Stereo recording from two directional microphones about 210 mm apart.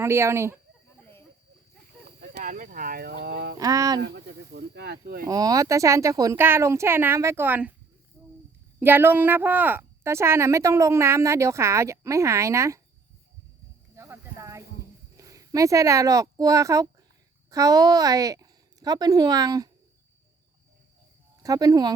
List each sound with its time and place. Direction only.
0.0 s speech: 10° right (ahead or behind)
2.2 s speech: 45° right (ahead or behind)
3.6 s speech: 15° right (ahead or behind)
4.0 s speech: 55° right (ahead or behind)
5.2 s speech: 15° right (ahead or behind)
8.2 s a sound: 10° right (ahead or behind)
8.8 s speech: 10° right (ahead or behind)
13.9 s a sound: 15° right (ahead or behind)
15.1 s speech: 15° right (ahead or behind)
21.4 s speech: 15° right (ahead or behind)